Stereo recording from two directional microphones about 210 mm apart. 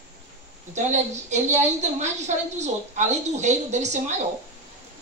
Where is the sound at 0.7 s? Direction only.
35° right (ahead or behind).